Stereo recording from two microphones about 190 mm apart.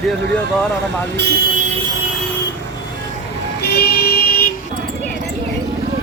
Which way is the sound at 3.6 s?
55° left (ahead or behind).